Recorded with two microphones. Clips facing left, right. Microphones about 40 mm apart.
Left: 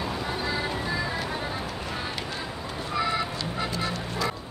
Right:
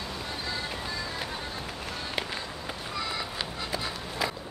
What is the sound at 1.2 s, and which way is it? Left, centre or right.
Music, centre.